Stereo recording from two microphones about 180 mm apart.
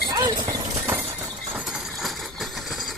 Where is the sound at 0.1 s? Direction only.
25° right (ahead or behind).